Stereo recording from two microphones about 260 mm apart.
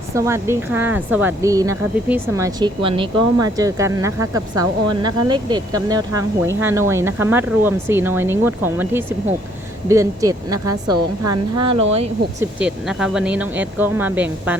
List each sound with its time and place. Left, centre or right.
0.1 s speech: centre
12.4 s speech: centre